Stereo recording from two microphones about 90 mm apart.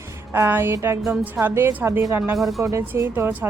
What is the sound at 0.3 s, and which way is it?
A woman's voice, 25° right (ahead or behind).